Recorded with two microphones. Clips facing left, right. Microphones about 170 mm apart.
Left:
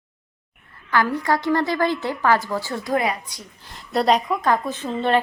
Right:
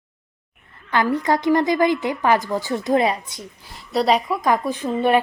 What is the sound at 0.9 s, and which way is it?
A woman's voice, 20° right (ahead or behind).